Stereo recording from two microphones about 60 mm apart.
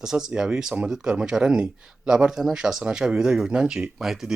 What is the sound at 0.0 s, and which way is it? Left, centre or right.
Speech, centre.